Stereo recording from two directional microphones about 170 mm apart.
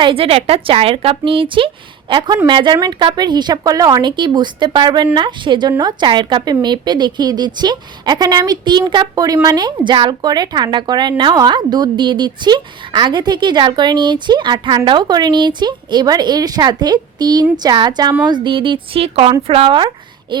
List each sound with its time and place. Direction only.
0.0 s a woman's voice: 30° right (ahead or behind)